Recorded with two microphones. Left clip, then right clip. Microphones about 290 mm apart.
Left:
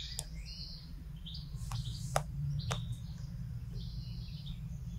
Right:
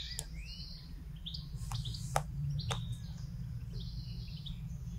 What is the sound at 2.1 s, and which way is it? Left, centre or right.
Bird, centre.